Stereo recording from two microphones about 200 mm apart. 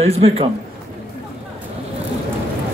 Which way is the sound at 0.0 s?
30° right (ahead or behind).